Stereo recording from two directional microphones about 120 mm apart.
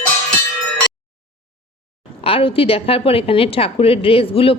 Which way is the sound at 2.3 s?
50° left (ahead or behind).